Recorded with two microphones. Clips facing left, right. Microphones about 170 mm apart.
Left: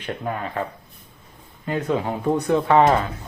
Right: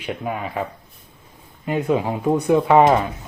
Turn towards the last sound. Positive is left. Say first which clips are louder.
# right 2 dB
turn(degrees=-15)  # may be behind; listen again after turning